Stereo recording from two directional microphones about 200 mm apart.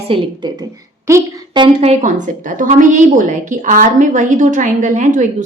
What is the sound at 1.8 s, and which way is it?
A woman's voice, 35° right (ahead or behind).